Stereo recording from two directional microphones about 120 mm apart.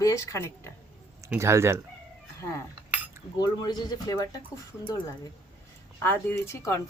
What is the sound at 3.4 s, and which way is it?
Speech, 35° left (ahead or behind).